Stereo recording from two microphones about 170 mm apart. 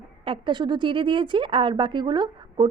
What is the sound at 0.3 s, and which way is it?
A woman's voice, 25° right (ahead or behind).